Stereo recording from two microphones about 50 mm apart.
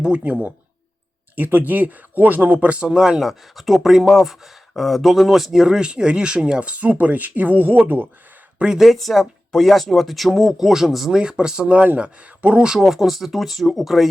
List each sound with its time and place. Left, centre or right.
0.0 s speech: right
1.4 s speech: right
3.0 s speech: centre; by 8.0 s right
8.5 s speech: centre
8.8 s speech: centre; by 12.5 s right
12.5 s speech: centre